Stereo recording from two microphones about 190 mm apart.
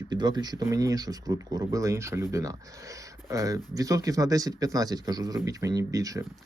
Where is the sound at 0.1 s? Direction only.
20° right (ahead or behind).